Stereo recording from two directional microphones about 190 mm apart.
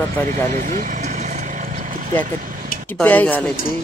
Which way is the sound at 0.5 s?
45° right (ahead or behind).